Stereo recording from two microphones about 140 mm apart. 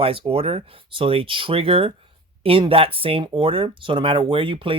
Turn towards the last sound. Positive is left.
turn(degrees=-40)  # may be behind; listen again after turning